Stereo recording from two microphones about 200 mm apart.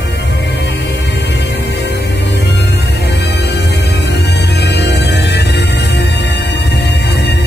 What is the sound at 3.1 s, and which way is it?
Music, 60° left (ahead or behind).